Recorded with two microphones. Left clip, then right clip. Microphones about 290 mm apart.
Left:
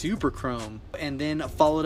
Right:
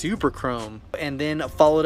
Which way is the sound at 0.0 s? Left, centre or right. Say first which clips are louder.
Right 4 dB; centre.